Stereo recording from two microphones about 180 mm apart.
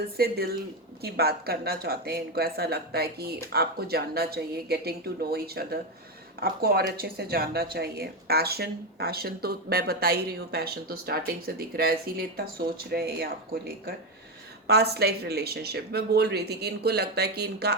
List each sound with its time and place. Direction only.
0.2 s speech: 60° right (ahead or behind)
14.7 s speech: 60° right (ahead or behind)